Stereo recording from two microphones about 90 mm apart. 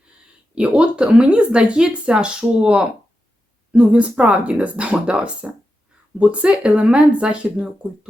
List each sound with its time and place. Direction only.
0.5 s speech: 10° right (ahead or behind)